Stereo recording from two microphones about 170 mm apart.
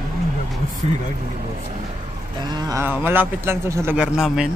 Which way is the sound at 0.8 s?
45° right (ahead or behind).